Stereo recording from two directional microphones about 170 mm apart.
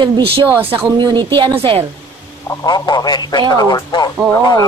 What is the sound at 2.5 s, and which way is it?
A man's voice, 20° left (ahead or behind).